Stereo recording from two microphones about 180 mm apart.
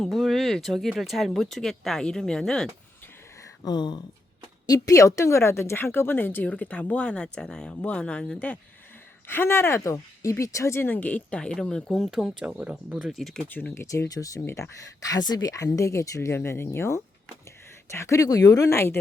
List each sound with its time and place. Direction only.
0.0 s speech: centre (ahead or behind)
3.6 s speech: 25° left (ahead or behind)